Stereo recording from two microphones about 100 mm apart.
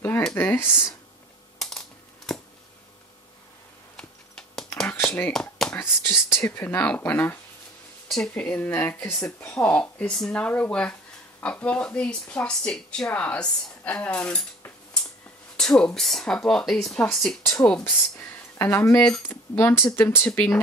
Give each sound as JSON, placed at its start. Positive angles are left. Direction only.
{"t": 0.4, "sound": "speech", "side_deg": 20}
{"t": 1.6, "sound": "a sound", "side_deg": 5}
{"t": 3.9, "sound": "a sound", "side_deg": 5}
{"t": 5.0, "sound": "a sound", "side_deg": 15}
{"t": 5.8, "sound": "speech", "side_deg": 25}
{"t": 8.1, "sound": "speech", "side_deg": 10}
{"t": 15.5, "sound": "speech", "side_deg": 5}
{"t": 17.8, "sound": "speech", "side_deg": 20}
{"t": 18.9, "sound": "speech", "side_deg": 10}
{"t": 19.2, "sound": "speech", "side_deg": 25}